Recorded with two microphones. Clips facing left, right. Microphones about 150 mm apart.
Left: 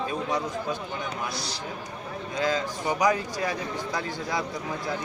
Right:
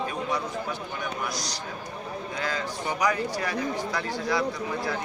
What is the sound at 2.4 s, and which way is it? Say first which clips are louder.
A man's voice: left 5 dB; 20° left (ahead or behind).